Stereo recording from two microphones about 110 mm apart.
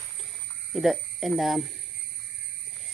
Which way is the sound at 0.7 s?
Centre (ahead or behind).